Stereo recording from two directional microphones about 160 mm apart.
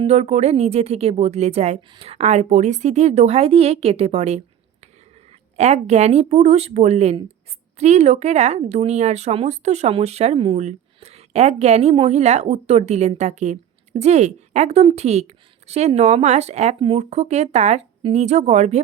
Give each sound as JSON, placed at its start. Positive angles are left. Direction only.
{"t": 0.0, "sound": "speech", "side_deg": -45}